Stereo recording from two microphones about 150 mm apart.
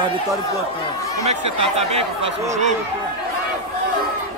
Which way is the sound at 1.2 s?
45° right (ahead or behind).